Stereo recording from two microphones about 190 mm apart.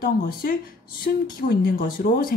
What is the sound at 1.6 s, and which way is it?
Speech, 50° left (ahead or behind).